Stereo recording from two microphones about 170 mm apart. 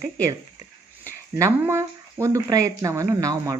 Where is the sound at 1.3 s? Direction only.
15° right (ahead or behind).